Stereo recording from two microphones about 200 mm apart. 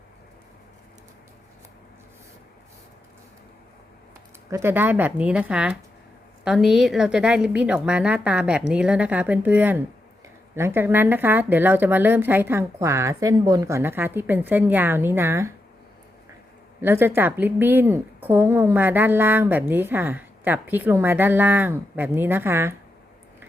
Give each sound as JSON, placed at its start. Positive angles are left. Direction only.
{"t": 4.4, "sound": "a woman's voice", "side_deg": -15}
{"t": 16.8, "sound": "a woman's voice", "side_deg": -10}